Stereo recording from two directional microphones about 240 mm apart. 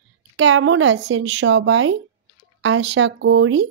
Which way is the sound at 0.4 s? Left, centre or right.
Right.